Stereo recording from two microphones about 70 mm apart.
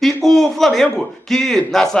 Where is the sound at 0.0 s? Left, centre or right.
Centre.